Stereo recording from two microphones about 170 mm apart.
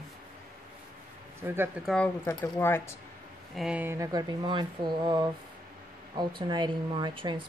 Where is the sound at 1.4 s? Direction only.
10° right (ahead or behind).